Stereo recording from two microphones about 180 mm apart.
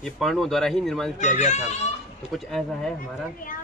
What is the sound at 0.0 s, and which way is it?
Speech, centre (ahead or behind).